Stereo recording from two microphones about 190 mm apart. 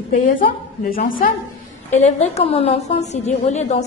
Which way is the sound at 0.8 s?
50° left (ahead or behind).